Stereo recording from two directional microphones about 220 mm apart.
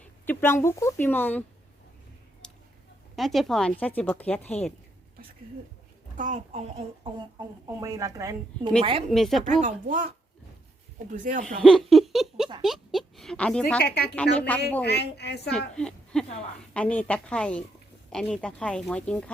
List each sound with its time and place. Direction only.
0.0 s speech: 10° left (ahead or behind)
2.4 s a sound: 5° left (ahead or behind)
3.2 s a woman's voice: centre (ahead or behind)
6.1 s a child's voice: 35° right (ahead or behind)
7.3 s a woman's voice: 15° right (ahead or behind)
8.8 s a woman's voice: 25° right (ahead or behind)
9.0 s a woman's voice: centre (ahead or behind)
9.4 s a child's voice: 35° right (ahead or behind)
11.4 s giggle: centre (ahead or behind)
12.6 s speech: centre (ahead or behind)
13.8 s a woman's voice: 45° left (ahead or behind)
14.2 s a woman's voice: 5° left (ahead or behind)
14.8 s a woman's voice: 50° left (ahead or behind)
15.4 s a woman's voice: 5° left (ahead or behind)